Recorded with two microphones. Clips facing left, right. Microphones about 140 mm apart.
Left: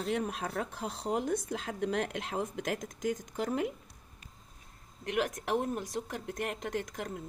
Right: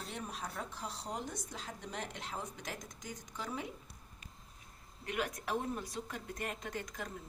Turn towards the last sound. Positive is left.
turn(degrees=60)  # may be behind; listen again after turning